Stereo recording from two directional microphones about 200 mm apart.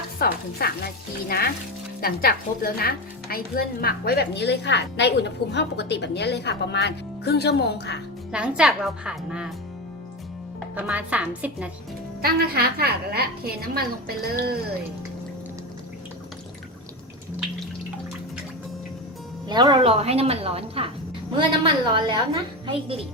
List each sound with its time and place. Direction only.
0.2 s chopping: 50° left (ahead or behind)
1.3 s a woman's voice: 50° left (ahead or behind)
8.3 s a woman's voice: 5° right (ahead or behind)
10.8 s a woman's voice: 5° right (ahead or behind)
12.2 s a woman's voice: 50° right (ahead or behind)
19.5 s a woman's voice: 20° right (ahead or behind)